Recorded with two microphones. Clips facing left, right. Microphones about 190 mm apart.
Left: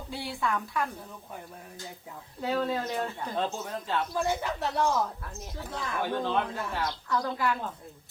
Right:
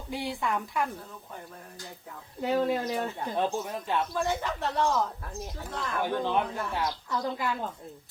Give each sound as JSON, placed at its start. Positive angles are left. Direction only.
{"t": 0.1, "sound": "speech", "side_deg": -15}
{"t": 2.4, "sound": "speech", "side_deg": -20}
{"t": 4.1, "sound": "speech", "side_deg": 10}
{"t": 6.0, "sound": "speech", "side_deg": -15}